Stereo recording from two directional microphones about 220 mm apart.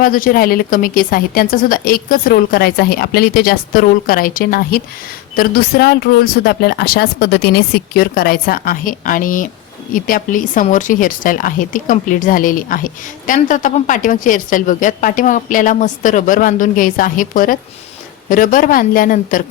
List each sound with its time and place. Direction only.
0.0 s speech: 40° left (ahead or behind)